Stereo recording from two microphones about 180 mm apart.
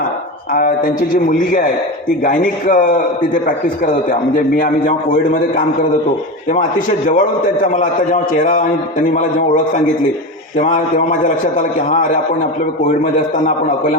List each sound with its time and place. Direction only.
0.5 s a man's voice: 50° left (ahead or behind)
4.1 s a man's voice: 50° left (ahead or behind)
10.6 s a man's voice: 45° left (ahead or behind)